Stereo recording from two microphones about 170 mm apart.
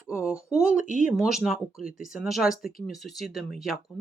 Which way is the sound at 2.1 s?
Centre (ahead or behind).